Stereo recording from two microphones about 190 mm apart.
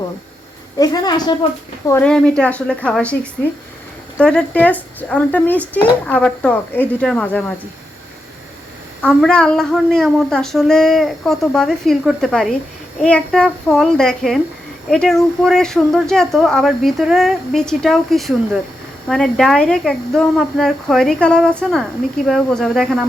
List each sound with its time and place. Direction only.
0.8 s a woman's voice: 20° left (ahead or behind)
1.9 s speech: 5° left (ahead or behind)
4.2 s speech: 5° left (ahead or behind)
9.0 s a woman's voice: 5° left (ahead or behind)